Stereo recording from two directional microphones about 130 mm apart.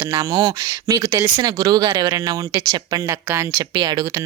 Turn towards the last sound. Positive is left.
turn(degrees=-30)  # may be behind; listen again after turning